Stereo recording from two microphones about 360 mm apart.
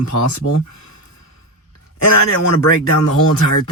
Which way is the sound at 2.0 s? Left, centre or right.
Left.